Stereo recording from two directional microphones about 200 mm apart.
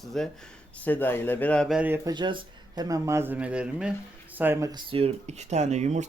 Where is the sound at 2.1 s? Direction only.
20° right (ahead or behind).